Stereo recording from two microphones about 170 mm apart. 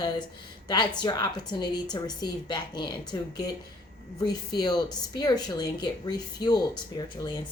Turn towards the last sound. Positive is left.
turn(degrees=25)  # may be behind; listen again after turning